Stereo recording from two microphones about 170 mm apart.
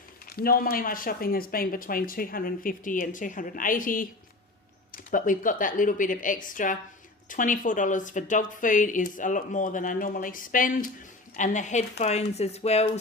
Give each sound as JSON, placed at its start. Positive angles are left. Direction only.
{"t": 0.3, "sound": "speech", "side_deg": 60}